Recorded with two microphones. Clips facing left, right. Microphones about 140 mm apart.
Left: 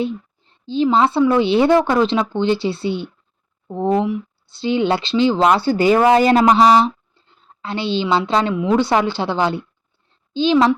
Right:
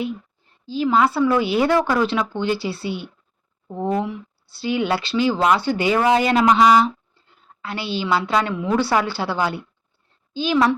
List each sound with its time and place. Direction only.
0.0 s a woman's voice: 25° left (ahead or behind)